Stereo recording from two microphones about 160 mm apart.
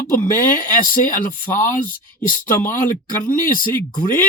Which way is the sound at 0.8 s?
60° left (ahead or behind).